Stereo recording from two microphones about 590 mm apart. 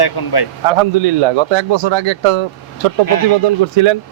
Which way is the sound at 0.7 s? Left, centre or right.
Right.